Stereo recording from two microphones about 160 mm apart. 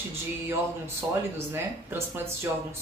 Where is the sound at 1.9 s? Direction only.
15° right (ahead or behind).